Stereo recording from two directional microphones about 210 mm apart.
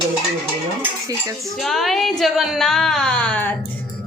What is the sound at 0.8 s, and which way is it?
Speech, 15° right (ahead or behind).